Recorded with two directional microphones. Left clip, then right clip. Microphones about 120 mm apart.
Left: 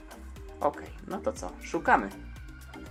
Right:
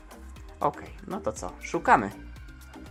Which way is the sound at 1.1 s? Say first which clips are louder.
Right 1 dB; 20° right (ahead or behind).